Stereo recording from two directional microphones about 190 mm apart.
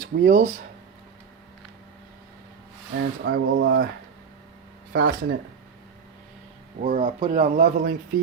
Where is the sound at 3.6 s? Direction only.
90° right.